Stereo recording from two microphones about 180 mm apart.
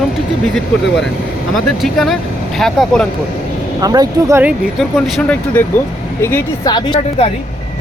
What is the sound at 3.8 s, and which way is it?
Speech, 20° right (ahead or behind).